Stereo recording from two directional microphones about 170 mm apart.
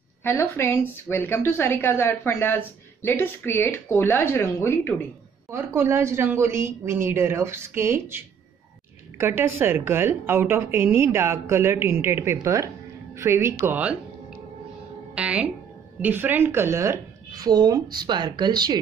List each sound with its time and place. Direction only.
0.2 s a woman's voice: 15° left (ahead or behind)
5.5 s a woman's voice: 15° right (ahead or behind)
9.2 s a woman's voice: 15° right (ahead or behind)
15.1 s a woman's voice: 10° right (ahead or behind); by 18.8 s 25° right (ahead or behind)